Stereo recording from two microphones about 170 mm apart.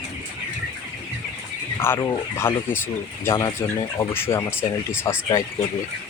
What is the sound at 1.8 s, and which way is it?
Speech, 15° left (ahead or behind).